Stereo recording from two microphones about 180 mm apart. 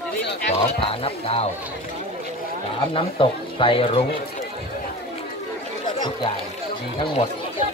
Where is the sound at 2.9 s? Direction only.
30° left (ahead or behind).